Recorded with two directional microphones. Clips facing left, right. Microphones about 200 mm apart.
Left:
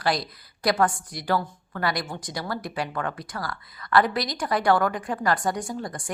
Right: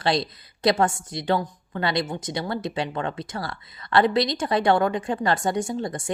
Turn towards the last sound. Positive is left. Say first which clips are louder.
# right 4 dB
turn(degrees=-25)  # may be behind; listen again after turning